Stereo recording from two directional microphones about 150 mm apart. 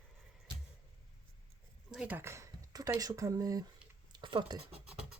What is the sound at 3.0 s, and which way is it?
Speech, 20° right (ahead or behind).